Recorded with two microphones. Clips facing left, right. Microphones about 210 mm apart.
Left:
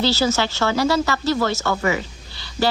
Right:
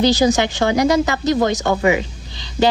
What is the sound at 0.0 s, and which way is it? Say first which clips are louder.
Speech: right 5 dB; 15° right (ahead or behind).